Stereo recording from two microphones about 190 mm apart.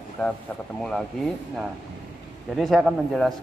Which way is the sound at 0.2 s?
5° left (ahead or behind).